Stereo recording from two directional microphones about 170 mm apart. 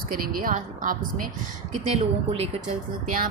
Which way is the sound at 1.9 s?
40° right (ahead or behind).